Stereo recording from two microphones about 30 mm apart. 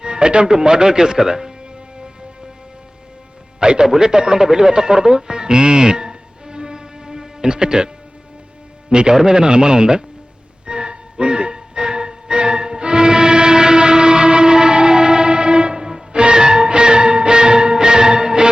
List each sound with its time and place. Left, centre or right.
0.0 s speech: right
3.6 s a man's voice: right
8.9 s a man's voice: right
10.7 s music: right